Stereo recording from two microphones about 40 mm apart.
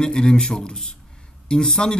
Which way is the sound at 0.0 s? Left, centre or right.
Centre.